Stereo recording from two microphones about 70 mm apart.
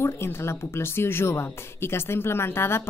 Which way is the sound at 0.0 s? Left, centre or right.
Left.